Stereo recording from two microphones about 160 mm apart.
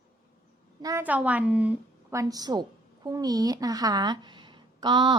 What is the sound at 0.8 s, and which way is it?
Speech, 20° right (ahead or behind).